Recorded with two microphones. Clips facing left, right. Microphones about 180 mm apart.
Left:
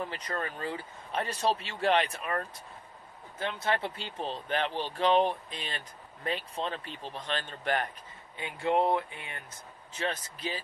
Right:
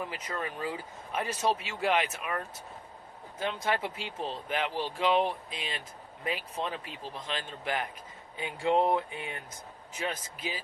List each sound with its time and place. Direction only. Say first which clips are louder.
0.1 s speech: left 1 dB; 5° right (ahead or behind)
3.6 s speech: left 3 dB; 10° right (ahead or behind)
8.4 s speech: right 1 dB; 20° right (ahead or behind)